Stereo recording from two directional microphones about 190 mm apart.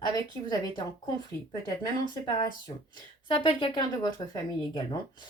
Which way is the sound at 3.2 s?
25° left (ahead or behind).